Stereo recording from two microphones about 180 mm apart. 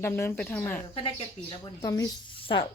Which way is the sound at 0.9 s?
25° left (ahead or behind).